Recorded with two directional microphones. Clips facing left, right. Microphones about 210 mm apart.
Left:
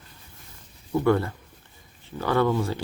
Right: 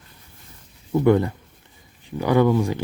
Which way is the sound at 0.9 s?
20° right (ahead or behind).